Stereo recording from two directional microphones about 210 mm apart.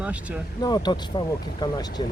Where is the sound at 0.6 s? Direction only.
20° left (ahead or behind).